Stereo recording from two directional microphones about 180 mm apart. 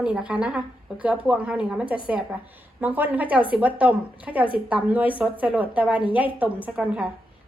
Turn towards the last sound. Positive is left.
turn(degrees=-5)  # may be behind; listen again after turning